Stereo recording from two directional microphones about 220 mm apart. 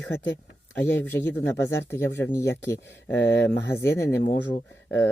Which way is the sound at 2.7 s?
55° left (ahead or behind).